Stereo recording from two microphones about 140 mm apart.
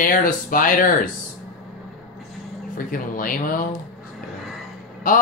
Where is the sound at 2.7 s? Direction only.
80° left.